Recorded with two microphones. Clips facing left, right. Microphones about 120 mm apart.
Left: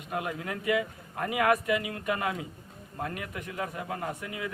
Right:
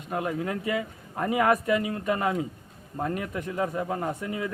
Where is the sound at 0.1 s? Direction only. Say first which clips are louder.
Right 5 dB; 35° right (ahead or behind).